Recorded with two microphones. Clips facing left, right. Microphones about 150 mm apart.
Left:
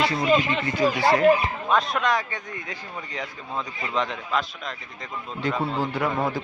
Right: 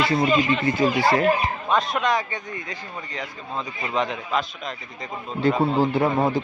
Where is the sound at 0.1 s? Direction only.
25° right (ahead or behind).